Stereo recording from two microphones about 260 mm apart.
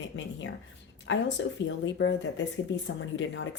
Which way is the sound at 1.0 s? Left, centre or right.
Left.